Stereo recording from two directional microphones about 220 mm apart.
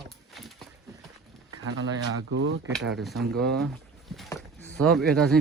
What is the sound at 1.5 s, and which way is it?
Speech, 65° right (ahead or behind).